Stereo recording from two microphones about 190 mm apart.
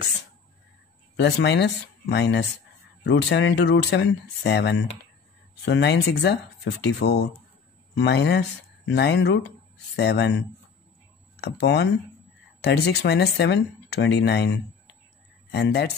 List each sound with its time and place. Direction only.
1.1 s speech: 65° left (ahead or behind)
11.4 s speech: 60° left (ahead or behind)